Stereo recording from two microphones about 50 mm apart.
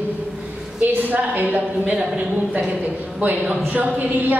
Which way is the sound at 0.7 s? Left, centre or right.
Right.